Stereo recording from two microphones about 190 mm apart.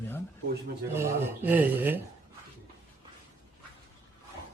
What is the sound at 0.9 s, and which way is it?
Speech, 10° right (ahead or behind).